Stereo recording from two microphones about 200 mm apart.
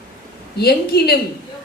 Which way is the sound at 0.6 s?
50° left (ahead or behind).